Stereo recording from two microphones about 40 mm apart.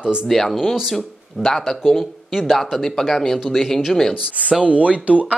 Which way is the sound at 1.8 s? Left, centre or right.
Centre.